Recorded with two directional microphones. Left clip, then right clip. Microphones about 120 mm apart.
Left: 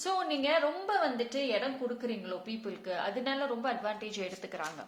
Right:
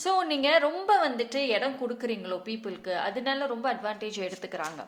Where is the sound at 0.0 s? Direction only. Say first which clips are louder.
Right 6 dB; 35° right (ahead or behind).